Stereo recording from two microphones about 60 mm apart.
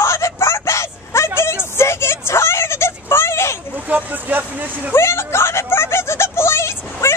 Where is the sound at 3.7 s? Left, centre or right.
Right.